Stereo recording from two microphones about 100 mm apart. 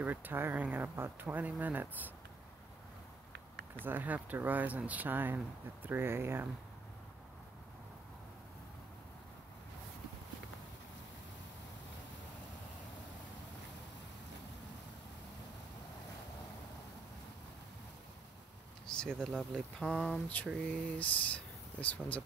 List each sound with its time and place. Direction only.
0.0 s speech: 20° right (ahead or behind)
3.8 s speech: 20° right (ahead or behind)
18.9 s speech: 5° left (ahead or behind)